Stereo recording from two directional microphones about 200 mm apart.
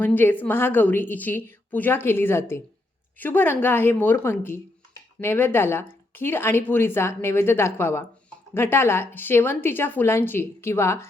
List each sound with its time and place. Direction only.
0.0 s a woman's voice: 10° left (ahead or behind)